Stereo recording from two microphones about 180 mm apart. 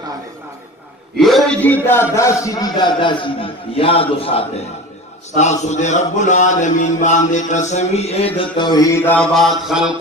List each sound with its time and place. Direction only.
1.1 s a man's voice: centre (ahead or behind); by 4.4 s 30° left (ahead or behind)
5.3 s mantra: 40° left (ahead or behind); by 10.0 s 5° right (ahead or behind)